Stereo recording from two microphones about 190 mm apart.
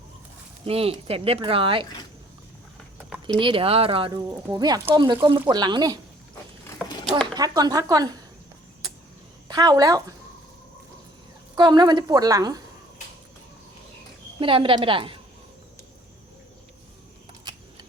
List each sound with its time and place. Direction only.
0.6 s speech: 30° right (ahead or behind)
3.4 s speech: 30° right (ahead or behind)
4.3 s speech: 20° right (ahead or behind)
7.3 s speech: 20° right (ahead or behind)
9.5 s speech: 20° right (ahead or behind)
11.5 s speech: 25° right (ahead or behind)
14.3 s speech: 25° right (ahead or behind)